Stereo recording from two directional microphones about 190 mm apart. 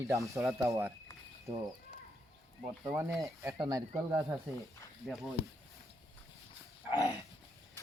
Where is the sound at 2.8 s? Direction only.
15° right (ahead or behind).